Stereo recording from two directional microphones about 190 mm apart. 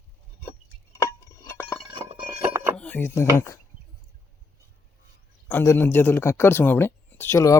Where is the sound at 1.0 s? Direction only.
15° left (ahead or behind).